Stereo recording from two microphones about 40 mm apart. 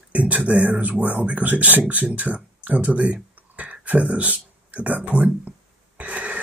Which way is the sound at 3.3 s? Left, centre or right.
Right.